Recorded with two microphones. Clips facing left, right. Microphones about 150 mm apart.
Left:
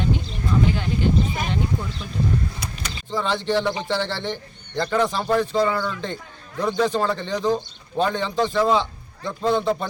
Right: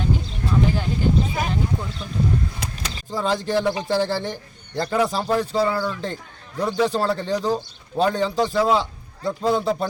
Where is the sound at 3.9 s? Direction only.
40° right (ahead or behind).